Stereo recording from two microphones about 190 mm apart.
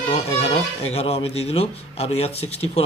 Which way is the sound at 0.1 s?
30° left (ahead or behind).